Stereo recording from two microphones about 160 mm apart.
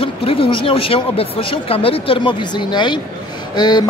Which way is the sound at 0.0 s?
35° left (ahead or behind).